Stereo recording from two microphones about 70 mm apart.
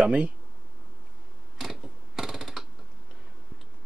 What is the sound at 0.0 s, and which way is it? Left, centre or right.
Speech, centre.